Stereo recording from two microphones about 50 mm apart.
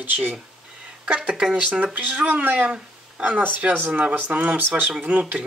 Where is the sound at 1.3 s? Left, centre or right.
Centre.